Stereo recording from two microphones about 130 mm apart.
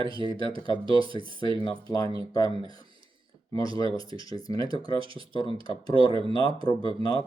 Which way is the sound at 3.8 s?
40° right (ahead or behind).